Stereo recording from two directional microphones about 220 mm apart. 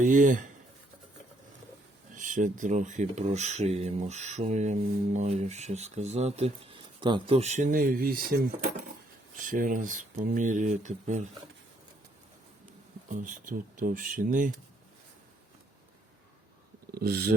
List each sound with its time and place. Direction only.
0.0 s speech: 35° right (ahead or behind)
2.1 s speech: 35° right (ahead or behind)
13.1 s speech: 35° right (ahead or behind)
16.9 s speech: 45° right (ahead or behind)